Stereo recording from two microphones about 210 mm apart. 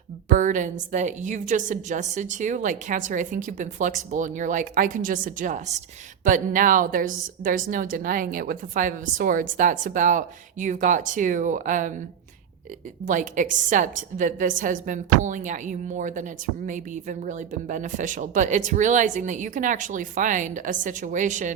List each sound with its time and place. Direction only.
0.3 s a woman's voice: 40° right (ahead or behind)
13.1 s a woman's voice: 40° right (ahead or behind)